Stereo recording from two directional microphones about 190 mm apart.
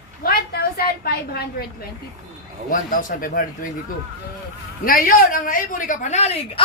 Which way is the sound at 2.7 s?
45° left (ahead or behind).